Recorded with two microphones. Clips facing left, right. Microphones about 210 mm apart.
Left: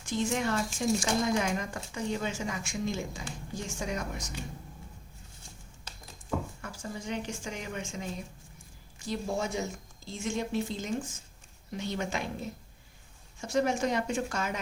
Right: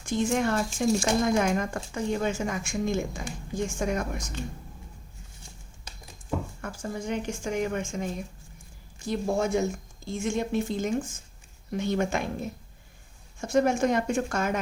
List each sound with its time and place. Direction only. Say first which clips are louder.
0.0 s speech: right 5 dB; 50° right (ahead or behind)
6.6 s speech: right 6 dB; 50° right (ahead or behind)